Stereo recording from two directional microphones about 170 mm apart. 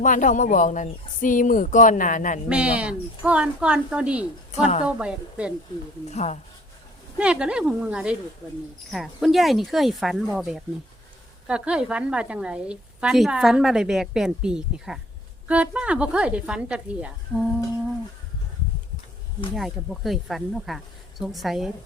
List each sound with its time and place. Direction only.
0.0 s speech: 50° left (ahead or behind)
2.5 s speech: 5° right (ahead or behind)
4.6 s speech: 35° left (ahead or behind)
4.9 s speech: 5° right (ahead or behind)
6.1 s speech: 40° left (ahead or behind)
7.2 s a woman's voice: 5° right (ahead or behind)
19.5 s a woman's voice: centre (ahead or behind)